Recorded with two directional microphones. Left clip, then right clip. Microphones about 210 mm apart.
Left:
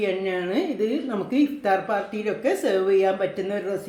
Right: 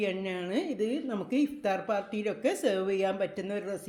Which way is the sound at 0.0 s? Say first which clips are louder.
Left 8 dB; 35° right (ahead or behind).